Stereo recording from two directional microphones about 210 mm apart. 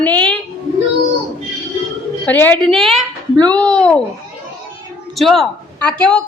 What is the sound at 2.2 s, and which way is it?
A woman's voice, 10° left (ahead or behind).